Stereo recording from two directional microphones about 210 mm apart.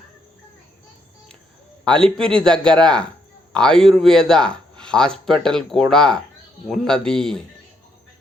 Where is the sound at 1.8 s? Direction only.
5° left (ahead or behind).